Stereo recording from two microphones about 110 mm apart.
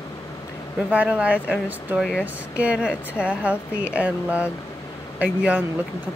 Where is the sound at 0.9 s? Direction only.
10° right (ahead or behind).